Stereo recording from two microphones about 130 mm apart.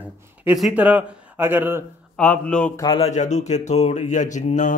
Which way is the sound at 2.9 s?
50° left (ahead or behind).